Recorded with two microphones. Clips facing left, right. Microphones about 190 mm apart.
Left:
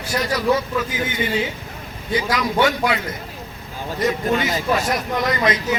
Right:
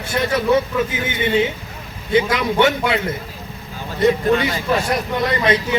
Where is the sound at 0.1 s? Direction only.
25° right (ahead or behind).